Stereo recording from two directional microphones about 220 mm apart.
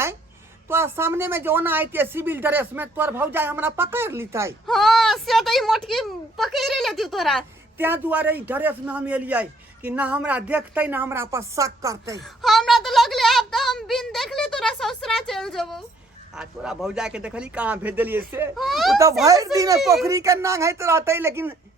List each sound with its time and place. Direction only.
0.7 s a man's voice: 10° right (ahead or behind)
4.6 s a woman's voice: centre (ahead or behind)
7.8 s a man's voice: 10° right (ahead or behind)
12.2 s a woman's voice: centre (ahead or behind)
19.2 s a man's voice: 15° right (ahead or behind)